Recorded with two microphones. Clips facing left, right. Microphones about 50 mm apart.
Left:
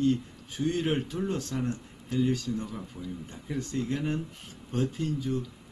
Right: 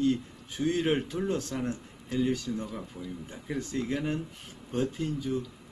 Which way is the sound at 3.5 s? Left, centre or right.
Centre.